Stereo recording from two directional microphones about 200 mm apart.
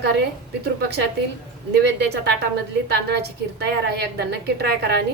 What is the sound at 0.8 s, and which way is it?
A woman's voice, 55° right (ahead or behind).